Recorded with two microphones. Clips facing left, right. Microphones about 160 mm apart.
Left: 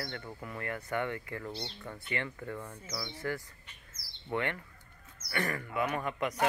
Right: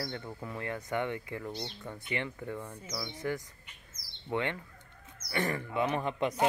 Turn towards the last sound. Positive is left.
turn(degrees=-30)  # may be behind; listen again after turning